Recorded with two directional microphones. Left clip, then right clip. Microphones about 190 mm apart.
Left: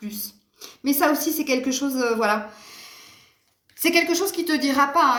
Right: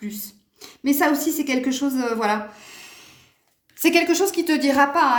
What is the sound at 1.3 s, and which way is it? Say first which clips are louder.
Speech: even; 45° right (ahead or behind).